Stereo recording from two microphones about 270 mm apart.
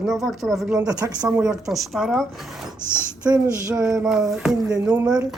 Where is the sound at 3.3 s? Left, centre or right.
Centre.